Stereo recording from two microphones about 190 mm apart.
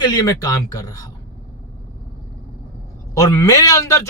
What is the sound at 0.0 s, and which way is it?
Speech, 20° left (ahead or behind).